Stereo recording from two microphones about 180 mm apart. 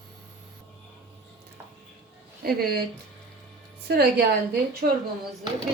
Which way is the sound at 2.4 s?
60° right (ahead or behind).